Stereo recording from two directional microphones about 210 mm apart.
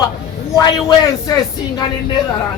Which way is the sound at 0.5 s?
20° left (ahead or behind).